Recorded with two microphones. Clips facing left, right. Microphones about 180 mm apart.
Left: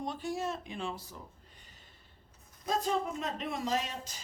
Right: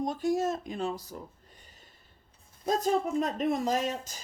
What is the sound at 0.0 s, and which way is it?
Speech, 45° right (ahead or behind).